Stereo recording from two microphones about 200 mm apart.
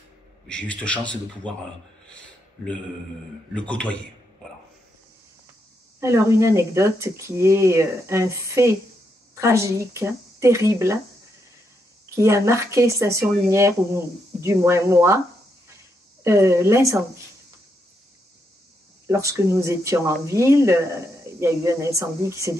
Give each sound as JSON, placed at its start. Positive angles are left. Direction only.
{"t": 0.5, "sound": "a man's voice", "side_deg": 5}
{"t": 3.5, "sound": "a man's voice", "side_deg": 5}
{"t": 5.9, "sound": "speech", "side_deg": -15}
{"t": 12.2, "sound": "speech", "side_deg": -15}
{"t": 16.3, "sound": "speech", "side_deg": -15}
{"t": 19.0, "sound": "speech", "side_deg": -15}